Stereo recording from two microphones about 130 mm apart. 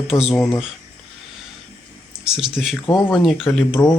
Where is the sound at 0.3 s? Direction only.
20° left (ahead or behind).